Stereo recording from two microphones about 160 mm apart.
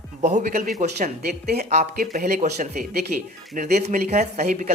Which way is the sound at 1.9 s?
65° right (ahead or behind).